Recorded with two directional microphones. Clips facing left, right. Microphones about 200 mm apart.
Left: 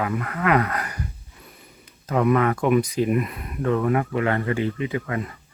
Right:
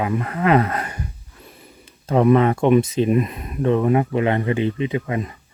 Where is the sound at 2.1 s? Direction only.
30° right (ahead or behind).